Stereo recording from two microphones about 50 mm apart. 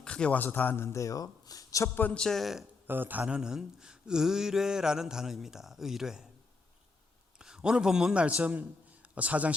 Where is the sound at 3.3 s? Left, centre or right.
Centre.